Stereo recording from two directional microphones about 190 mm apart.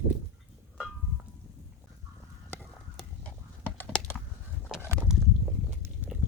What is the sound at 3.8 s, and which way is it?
Typing, 10° left (ahead or behind).